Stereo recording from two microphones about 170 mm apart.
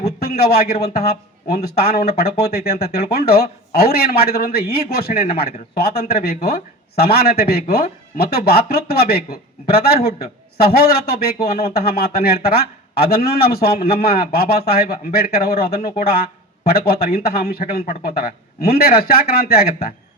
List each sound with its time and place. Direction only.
0.2 s a man's voice: 65° left (ahead or behind)